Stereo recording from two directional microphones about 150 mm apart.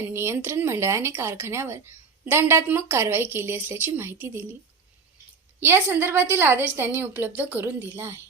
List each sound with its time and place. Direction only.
0.0 s speech: 15° right (ahead or behind)
5.5 s speech: 15° right (ahead or behind)